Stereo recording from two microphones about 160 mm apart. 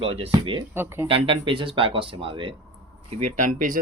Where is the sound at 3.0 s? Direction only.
50° right (ahead or behind).